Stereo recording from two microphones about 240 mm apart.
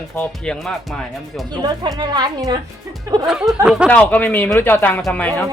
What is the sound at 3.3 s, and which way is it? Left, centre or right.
Speech, centre.